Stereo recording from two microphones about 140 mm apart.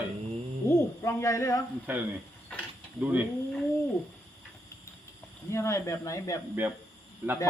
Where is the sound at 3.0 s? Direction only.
10° right (ahead or behind).